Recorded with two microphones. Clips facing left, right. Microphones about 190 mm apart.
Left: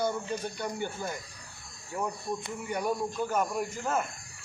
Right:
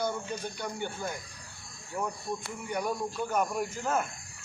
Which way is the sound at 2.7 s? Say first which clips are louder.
Left 1 dB; 5° left (ahead or behind).